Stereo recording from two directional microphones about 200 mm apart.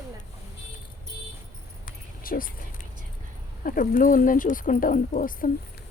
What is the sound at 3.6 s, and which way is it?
Speech, 45° left (ahead or behind).